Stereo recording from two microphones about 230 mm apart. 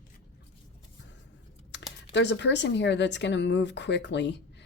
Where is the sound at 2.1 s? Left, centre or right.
Left.